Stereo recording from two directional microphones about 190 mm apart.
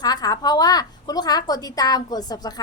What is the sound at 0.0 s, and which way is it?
A woman's voice, 20° left (ahead or behind).